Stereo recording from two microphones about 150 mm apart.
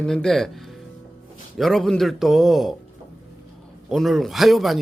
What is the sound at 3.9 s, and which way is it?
Speech, centre (ahead or behind).